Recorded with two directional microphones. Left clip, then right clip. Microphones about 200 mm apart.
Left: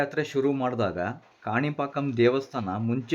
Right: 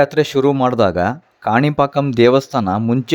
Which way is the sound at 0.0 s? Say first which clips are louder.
Right 12 dB; 40° right (ahead or behind).